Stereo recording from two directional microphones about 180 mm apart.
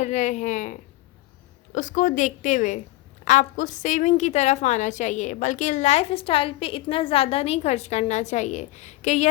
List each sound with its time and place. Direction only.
0.0 s a woman's voice: 40° left (ahead or behind)